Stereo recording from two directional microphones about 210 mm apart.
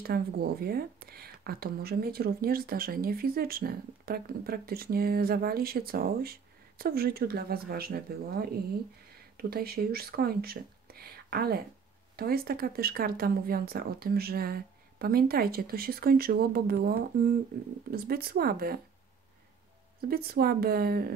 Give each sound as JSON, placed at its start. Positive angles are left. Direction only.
{"t": 0.0, "sound": "speech", "side_deg": -45}
{"t": 20.0, "sound": "speech", "side_deg": -45}